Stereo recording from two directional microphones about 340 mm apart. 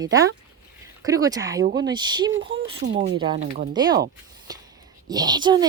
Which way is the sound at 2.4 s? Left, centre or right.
Right.